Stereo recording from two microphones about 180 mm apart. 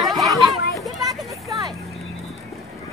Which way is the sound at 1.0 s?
20° right (ahead or behind).